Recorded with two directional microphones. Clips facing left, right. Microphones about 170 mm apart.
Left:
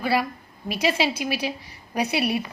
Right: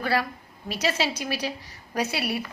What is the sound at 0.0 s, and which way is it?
A woman's voice, 10° left (ahead or behind).